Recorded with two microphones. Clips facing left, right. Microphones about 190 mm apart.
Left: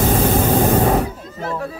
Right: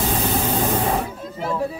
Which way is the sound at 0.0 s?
50° left (ahead or behind).